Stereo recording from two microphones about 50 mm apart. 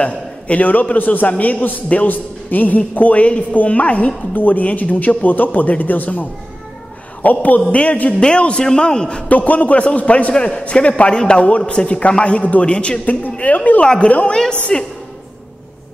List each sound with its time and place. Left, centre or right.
0.0 s a man's voice: left
13.0 s a man's voice: left
14.7 s a woman's voice: centre